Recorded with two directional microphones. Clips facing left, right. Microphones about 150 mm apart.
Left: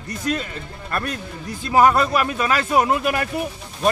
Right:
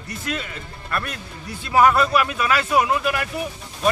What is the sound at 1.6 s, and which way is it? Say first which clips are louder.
Speech: left 1 dB; 35° left (ahead or behind).